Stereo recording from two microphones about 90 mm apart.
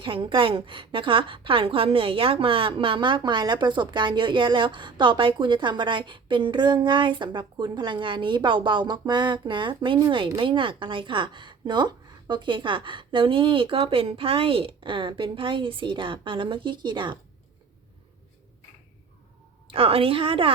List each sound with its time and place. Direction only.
0.0 s a woman's voice: 70° right (ahead or behind)
19.6 s a woman's voice: 90° right